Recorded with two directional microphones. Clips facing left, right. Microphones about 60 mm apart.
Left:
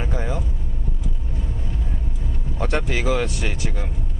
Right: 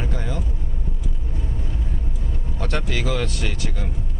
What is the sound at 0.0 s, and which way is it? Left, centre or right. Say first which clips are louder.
Vehicle: left 2 dB; centre.